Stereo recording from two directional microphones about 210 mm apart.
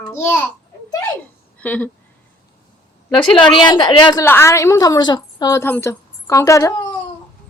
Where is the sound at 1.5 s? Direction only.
5° left (ahead or behind).